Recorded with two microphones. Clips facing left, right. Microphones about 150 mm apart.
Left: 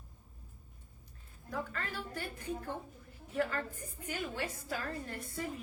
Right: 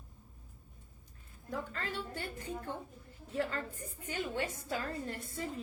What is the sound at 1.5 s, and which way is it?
A woman's voice, 25° right (ahead or behind).